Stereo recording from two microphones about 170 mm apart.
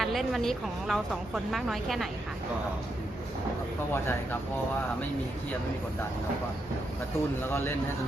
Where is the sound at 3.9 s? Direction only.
15° left (ahead or behind).